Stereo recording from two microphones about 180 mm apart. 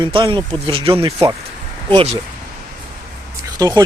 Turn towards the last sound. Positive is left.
turn(degrees=-20)  # may be behind; listen again after turning